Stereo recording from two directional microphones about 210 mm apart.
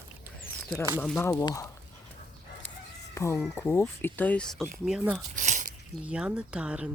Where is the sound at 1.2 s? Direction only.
10° left (ahead or behind).